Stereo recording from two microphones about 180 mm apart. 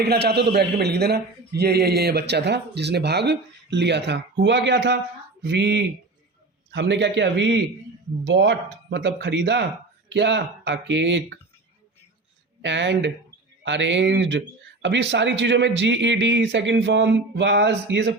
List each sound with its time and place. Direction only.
0.0 s a man's voice: 60° right (ahead or behind); by 11.3 s 85° right
12.6 s speech: 85° right